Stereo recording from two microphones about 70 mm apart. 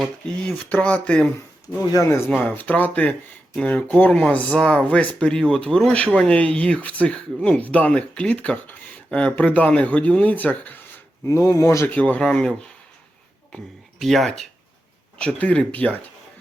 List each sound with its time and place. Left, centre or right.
0.6 s speech: centre
1.6 s speech: left
2.0 s speech: left
2.5 s speech: left
5.3 s speech: centre; by 10.8 s left
11.3 s speech: left
11.9 s speech: centre
14.0 s speech: centre
15.4 s speech: left